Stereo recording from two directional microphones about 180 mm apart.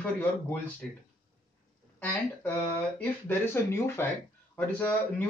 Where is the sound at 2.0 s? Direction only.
10° left (ahead or behind).